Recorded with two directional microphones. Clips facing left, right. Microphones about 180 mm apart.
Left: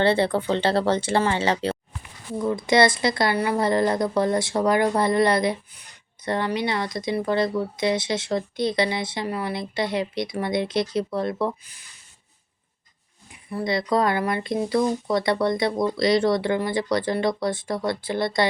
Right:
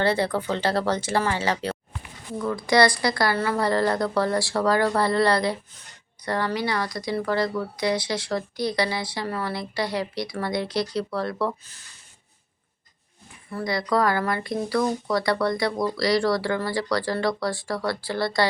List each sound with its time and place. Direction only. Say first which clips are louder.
0.0 s a woman's voice: left 3 dB; 25° left (ahead or behind)
13.3 s a woman's voice: left 2 dB; 15° left (ahead or behind)